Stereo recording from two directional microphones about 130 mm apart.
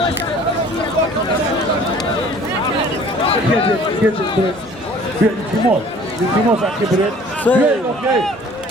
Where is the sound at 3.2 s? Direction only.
45° left (ahead or behind).